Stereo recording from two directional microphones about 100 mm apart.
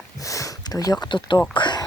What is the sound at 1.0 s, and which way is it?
Speech, 50° left (ahead or behind).